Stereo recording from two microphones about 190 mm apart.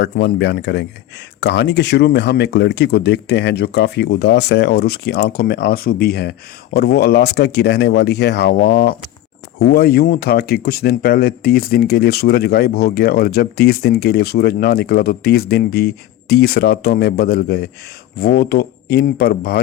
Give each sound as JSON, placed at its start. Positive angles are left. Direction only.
{"t": 0.0, "sound": "speech", "side_deg": 65}